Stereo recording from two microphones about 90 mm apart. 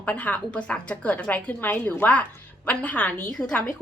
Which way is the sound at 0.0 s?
20° left (ahead or behind).